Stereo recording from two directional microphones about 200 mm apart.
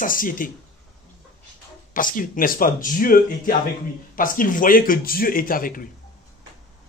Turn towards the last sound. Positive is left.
turn(degrees=45)  # may be behind; listen again after turning